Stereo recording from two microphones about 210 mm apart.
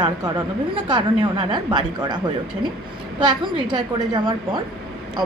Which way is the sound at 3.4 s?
20° right (ahead or behind).